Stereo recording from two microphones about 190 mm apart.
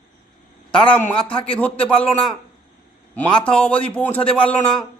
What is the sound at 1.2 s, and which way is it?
Speech, 30° left (ahead or behind).